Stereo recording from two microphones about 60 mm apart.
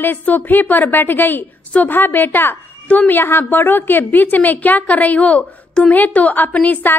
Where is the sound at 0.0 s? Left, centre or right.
Left.